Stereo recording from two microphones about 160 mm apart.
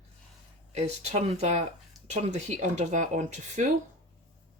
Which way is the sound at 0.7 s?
45° right (ahead or behind).